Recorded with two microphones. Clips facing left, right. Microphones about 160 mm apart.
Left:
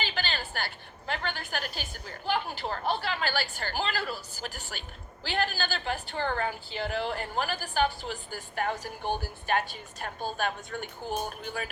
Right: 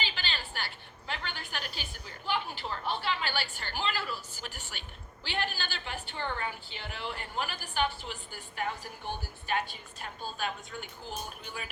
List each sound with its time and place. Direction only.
0.0 s a woman's voice: 50° left (ahead or behind)